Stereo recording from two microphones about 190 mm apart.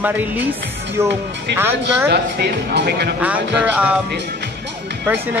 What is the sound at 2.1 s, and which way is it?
Speech, 60° right (ahead or behind).